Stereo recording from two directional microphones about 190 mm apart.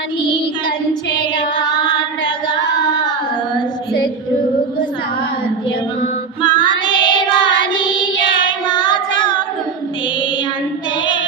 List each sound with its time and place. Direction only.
6.4 s child singing: 25° left (ahead or behind)